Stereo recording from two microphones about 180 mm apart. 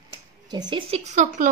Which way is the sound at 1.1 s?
40° right (ahead or behind).